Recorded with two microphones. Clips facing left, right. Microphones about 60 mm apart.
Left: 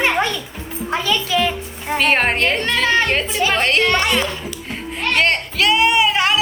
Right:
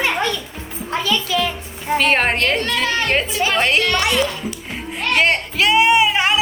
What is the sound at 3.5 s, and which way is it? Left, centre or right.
Speech, centre.